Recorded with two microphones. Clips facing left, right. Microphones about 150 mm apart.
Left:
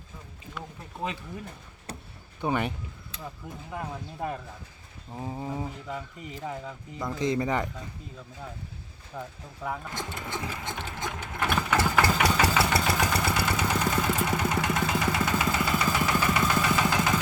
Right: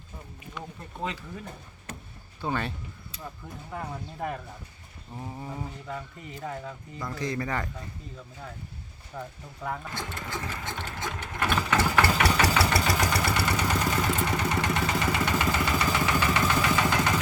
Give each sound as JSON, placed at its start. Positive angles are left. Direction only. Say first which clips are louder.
{"t": 1.9, "sound": "a sound", "louder": "left 1 dB", "side_deg": 35}
{"t": 2.4, "sound": "mantra", "louder": "left 3 dB", "side_deg": 15}
{"t": 5.1, "sound": "mantra", "louder": "left 4 dB", "side_deg": 20}
{"t": 7.0, "sound": "speech", "louder": "left 4 dB", "side_deg": 20}
{"t": 9.1, "sound": "speech", "louder": "even", "side_deg": 0}
{"t": 9.9, "sound": "sewing machine", "louder": "left 1 dB", "side_deg": 15}
{"t": 11.5, "sound": "engine", "louder": "even", "side_deg": 5}
{"t": 13.3, "sound": "vehicle", "louder": "even", "side_deg": 10}